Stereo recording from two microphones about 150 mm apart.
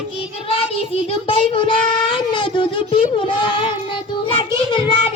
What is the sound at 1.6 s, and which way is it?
Child singing, 35° left (ahead or behind).